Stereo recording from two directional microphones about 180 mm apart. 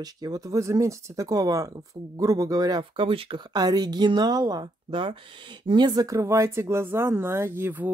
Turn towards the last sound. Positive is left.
turn(degrees=-10)  # may be behind; listen again after turning